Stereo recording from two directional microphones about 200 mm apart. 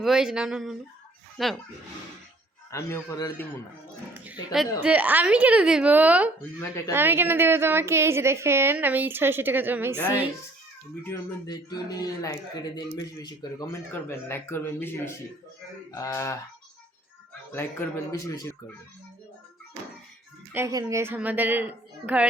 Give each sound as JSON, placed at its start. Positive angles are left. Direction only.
{"t": 0.0, "sound": "speech", "side_deg": 0}
{"t": 2.6, "sound": "speech", "side_deg": 15}
{"t": 4.5, "sound": "a woman's voice", "side_deg": -5}
{"t": 11.1, "sound": "speech", "side_deg": 20}
{"t": 17.5, "sound": "speech", "side_deg": 10}
{"t": 20.5, "sound": "a woman's voice", "side_deg": -15}